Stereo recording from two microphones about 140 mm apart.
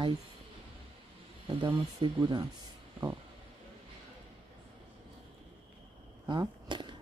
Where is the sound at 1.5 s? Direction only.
35° right (ahead or behind).